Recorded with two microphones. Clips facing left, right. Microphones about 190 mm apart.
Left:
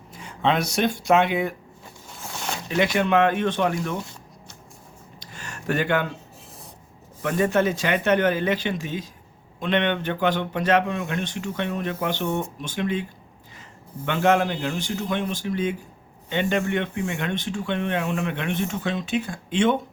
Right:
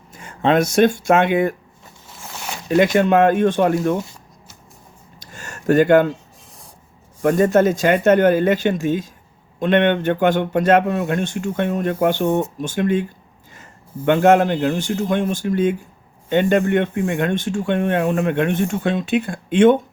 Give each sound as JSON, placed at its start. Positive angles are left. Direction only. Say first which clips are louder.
{"t": 0.1, "sound": "speech", "louder": "right 6 dB", "side_deg": -50}
{"t": 2.6, "sound": "speech", "louder": "right 7 dB", "side_deg": -45}
{"t": 5.2, "sound": "a sound", "louder": "right 8 dB", "side_deg": -45}
{"t": 7.2, "sound": "speech", "louder": "right 7 dB", "side_deg": -40}